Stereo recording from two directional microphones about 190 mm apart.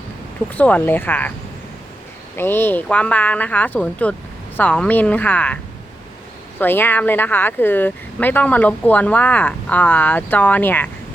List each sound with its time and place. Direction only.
0.5 s speech: 10° left (ahead or behind)
2.4 s speech: 10° left (ahead or behind)
6.6 s speech: 10° left (ahead or behind)